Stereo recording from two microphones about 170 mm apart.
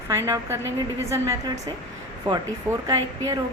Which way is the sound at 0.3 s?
15° right (ahead or behind).